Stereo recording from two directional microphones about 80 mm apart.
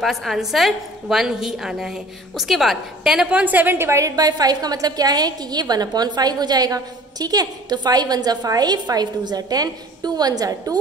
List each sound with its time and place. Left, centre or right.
0.0 s a woman's voice: centre; by 4.3 s right
4.3 s a woman's voice: right